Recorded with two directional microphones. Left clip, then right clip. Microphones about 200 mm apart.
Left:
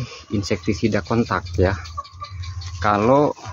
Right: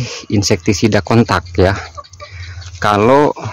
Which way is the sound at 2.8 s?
45° right (ahead or behind).